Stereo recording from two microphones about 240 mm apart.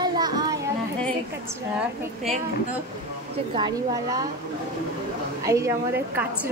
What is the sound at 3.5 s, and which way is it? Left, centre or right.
Speech, centre.